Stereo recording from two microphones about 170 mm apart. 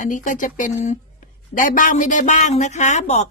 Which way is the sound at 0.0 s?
50° left (ahead or behind).